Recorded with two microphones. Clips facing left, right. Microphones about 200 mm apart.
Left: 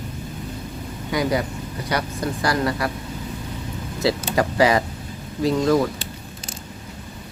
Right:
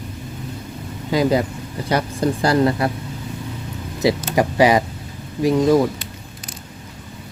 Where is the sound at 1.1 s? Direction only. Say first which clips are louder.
Right 5 dB; 25° right (ahead or behind).